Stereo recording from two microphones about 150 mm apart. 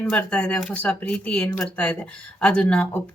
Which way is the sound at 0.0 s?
10° left (ahead or behind).